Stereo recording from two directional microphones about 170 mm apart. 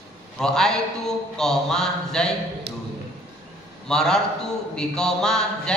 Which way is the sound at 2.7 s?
75° right (ahead or behind).